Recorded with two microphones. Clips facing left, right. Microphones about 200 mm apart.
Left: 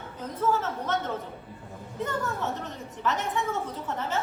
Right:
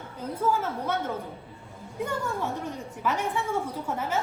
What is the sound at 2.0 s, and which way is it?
A woman's voice, 10° right (ahead or behind).